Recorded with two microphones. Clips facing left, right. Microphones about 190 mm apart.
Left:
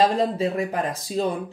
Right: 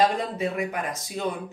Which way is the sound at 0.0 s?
35° left (ahead or behind).